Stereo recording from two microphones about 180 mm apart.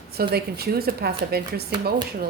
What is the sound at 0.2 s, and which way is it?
Speech, 60° right (ahead or behind).